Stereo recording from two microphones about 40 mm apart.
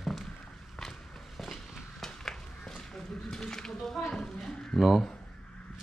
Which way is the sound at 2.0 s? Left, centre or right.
Centre.